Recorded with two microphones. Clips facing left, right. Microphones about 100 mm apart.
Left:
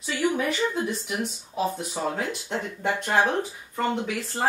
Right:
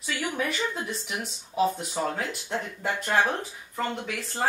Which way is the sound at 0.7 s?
Centre (ahead or behind).